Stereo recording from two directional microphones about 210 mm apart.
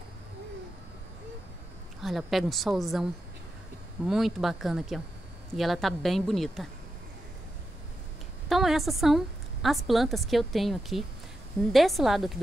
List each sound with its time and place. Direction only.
2.0 s a woman's voice: centre (ahead or behind)
8.5 s a woman's voice: centre (ahead or behind)